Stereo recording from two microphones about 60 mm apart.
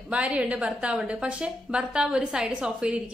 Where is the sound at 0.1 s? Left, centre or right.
Right.